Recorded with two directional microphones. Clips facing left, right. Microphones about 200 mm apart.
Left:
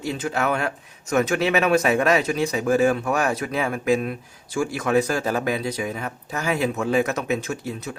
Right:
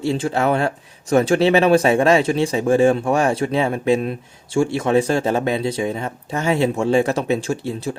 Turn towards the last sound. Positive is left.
turn(degrees=-30)  # may be behind; listen again after turning